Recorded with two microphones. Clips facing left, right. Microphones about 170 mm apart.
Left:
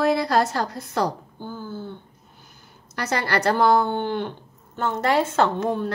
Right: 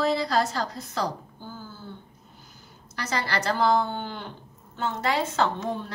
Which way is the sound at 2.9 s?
60° left (ahead or behind).